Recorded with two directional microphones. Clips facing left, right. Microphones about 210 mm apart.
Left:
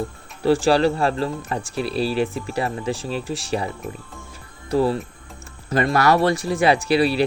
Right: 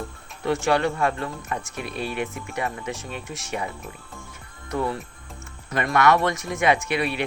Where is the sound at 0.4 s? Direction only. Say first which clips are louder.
Left 5 dB; 30° left (ahead or behind).